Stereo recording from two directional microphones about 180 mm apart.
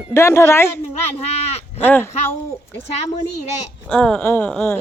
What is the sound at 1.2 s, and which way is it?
Speech, 35° left (ahead or behind).